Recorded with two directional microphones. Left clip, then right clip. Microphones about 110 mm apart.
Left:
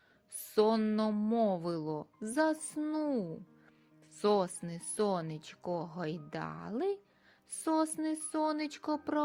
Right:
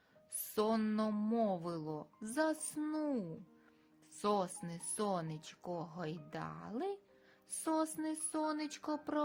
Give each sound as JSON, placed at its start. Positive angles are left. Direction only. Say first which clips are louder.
{"t": 0.5, "sound": "speech", "louder": "left 7 dB", "side_deg": 25}
{"t": 1.1, "sound": "speech", "louder": "left 4 dB", "side_deg": 15}
{"t": 1.4, "sound": "speech", "louder": "left 5 dB", "side_deg": 30}